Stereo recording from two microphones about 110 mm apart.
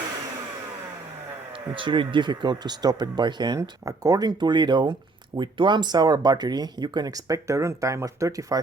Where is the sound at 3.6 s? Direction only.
30° right (ahead or behind).